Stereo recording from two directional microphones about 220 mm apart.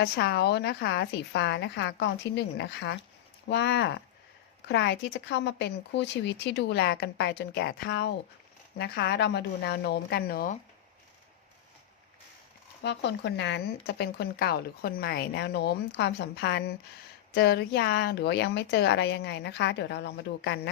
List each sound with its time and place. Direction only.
0.0 s speech: 50° left (ahead or behind)
12.8 s speech: 50° left (ahead or behind)